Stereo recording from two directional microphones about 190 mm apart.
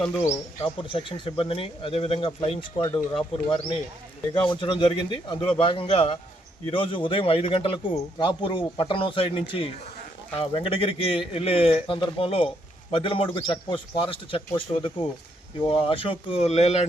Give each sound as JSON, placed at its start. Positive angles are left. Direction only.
{"t": 0.6, "sound": "a man's voice", "side_deg": 30}